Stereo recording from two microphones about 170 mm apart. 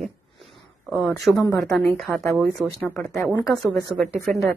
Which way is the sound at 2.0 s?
Centre (ahead or behind).